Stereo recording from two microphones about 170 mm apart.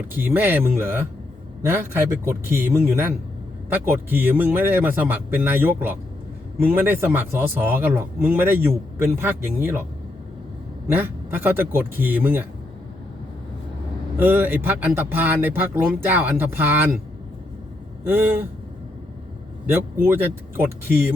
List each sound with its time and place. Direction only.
0.1 s speech: 10° right (ahead or behind)
10.8 s speech: 10° right (ahead or behind)
14.2 s speech: 10° right (ahead or behind)
18.0 s speech: 10° right (ahead or behind)
19.7 s speech: 10° right (ahead or behind)